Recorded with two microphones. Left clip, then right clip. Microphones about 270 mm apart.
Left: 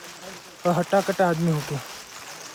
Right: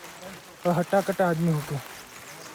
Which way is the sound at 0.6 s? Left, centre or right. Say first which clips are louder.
Left 2 dB; left.